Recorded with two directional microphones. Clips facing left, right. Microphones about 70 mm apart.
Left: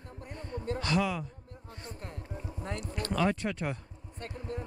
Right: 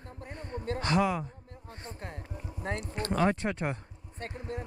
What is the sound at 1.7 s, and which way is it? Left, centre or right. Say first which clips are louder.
Music: right 1 dB; right.